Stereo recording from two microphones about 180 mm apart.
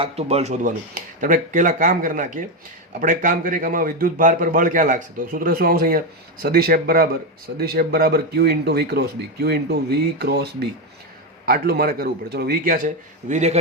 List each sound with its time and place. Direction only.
0.0 s a man's voice: 35° right (ahead or behind)